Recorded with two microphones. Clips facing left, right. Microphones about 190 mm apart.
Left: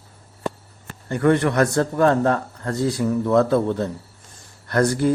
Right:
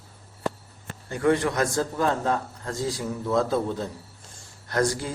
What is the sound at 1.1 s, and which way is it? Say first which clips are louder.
A man's voice: left 4 dB; 60° left (ahead or behind).